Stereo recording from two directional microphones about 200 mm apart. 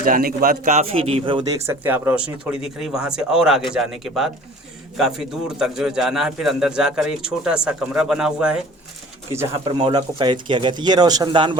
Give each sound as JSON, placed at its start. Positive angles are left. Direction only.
{"t": 0.0, "sound": "a man's voice", "side_deg": -45}
{"t": 1.6, "sound": "a man's voice", "side_deg": -10}
{"t": 9.5, "sound": "speech", "side_deg": -25}